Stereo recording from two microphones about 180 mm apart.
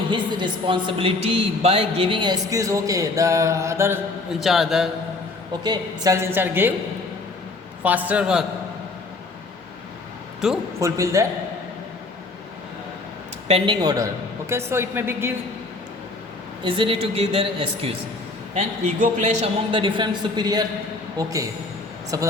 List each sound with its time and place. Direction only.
0.1 s speech: 25° right (ahead or behind)
4.4 s a man's voice: centre (ahead or behind)
5.6 s a woman's voice: 20° right (ahead or behind)
7.9 s a woman's voice: 10° right (ahead or behind)
10.4 s a man's voice: centre (ahead or behind)
10.8 s a woman's voice: 15° right (ahead or behind)
13.5 s a woman's voice: 25° right (ahead or behind)
16.6 s a man's voice: 30° right (ahead or behind)
18.5 s speech: 40° right (ahead or behind); by 22.3 s 20° right (ahead or behind)